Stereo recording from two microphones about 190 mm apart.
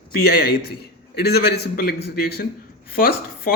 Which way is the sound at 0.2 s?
55° left (ahead or behind).